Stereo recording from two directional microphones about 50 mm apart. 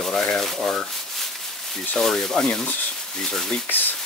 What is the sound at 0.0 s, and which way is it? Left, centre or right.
Rub, centre.